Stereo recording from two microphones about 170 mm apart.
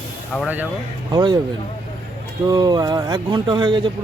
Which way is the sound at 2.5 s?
25° right (ahead or behind).